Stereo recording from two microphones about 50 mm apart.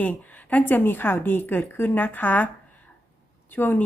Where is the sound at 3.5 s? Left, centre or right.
Left.